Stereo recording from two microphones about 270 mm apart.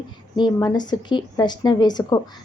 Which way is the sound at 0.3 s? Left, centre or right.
Centre.